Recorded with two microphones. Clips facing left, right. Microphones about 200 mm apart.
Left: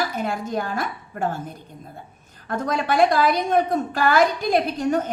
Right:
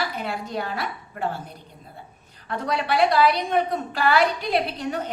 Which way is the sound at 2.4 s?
45° left (ahead or behind).